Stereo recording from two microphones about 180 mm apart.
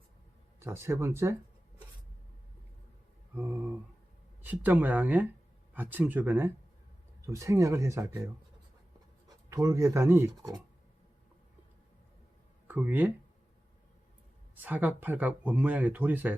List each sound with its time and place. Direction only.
0.6 s speech: 15° right (ahead or behind)
4.4 s speech: 10° right (ahead or behind)
9.5 s speech: 15° right (ahead or behind)
12.6 s speech: 10° right (ahead or behind)
14.5 s speech: 10° right (ahead or behind)